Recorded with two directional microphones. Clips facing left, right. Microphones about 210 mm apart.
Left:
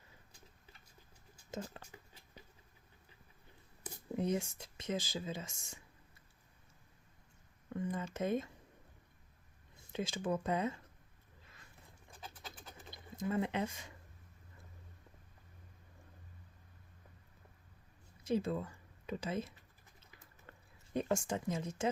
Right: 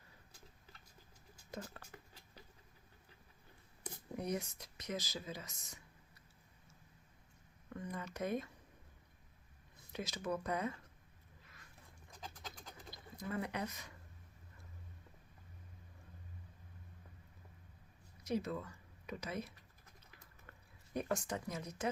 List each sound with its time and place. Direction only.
1.5 s speech: 25° left (ahead or behind)
4.2 s speech: 25° left (ahead or behind)
7.8 s speech: 30° left (ahead or behind)
9.9 s speech: 30° left (ahead or behind)
12.2 s a sound: 5° left (ahead or behind)
12.9 s speech: 25° left (ahead or behind)
18.3 s speech: 30° left (ahead or behind)
20.5 s speech: 25° left (ahead or behind)